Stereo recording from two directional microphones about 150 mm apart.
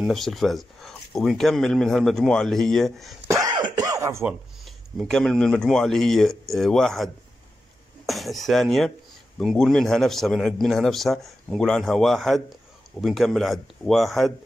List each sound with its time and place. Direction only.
0.0 s speech: centre (ahead or behind)
3.3 s throat clearing: 25° right (ahead or behind)
4.3 s speech: centre (ahead or behind)
8.1 s speech: centre (ahead or behind)